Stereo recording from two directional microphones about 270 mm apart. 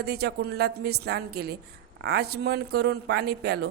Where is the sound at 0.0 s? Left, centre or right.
Right.